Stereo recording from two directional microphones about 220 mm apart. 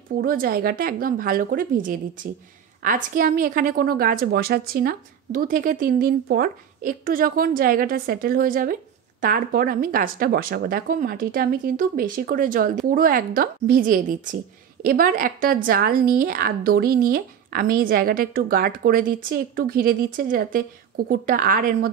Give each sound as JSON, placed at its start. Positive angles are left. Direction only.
{"t": 0.2, "sound": "a woman's voice", "side_deg": -40}